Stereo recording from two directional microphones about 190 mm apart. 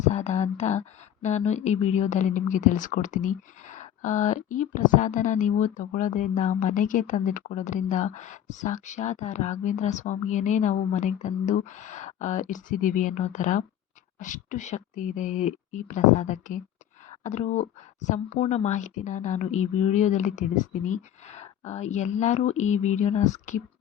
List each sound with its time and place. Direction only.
0.0 s speech: 35° left (ahead or behind)